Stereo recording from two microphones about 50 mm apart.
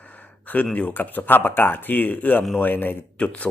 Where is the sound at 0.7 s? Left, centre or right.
Left.